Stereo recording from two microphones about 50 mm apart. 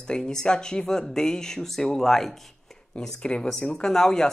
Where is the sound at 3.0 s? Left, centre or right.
Centre.